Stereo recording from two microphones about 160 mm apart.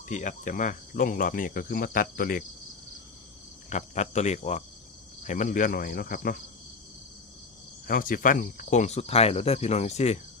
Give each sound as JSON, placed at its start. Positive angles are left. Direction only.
{"t": 0.1, "sound": "speech", "side_deg": 50}
{"t": 3.7, "sound": "cricket", "side_deg": 50}
{"t": 5.2, "sound": "speech", "side_deg": 50}
{"t": 7.9, "sound": "cricket", "side_deg": 60}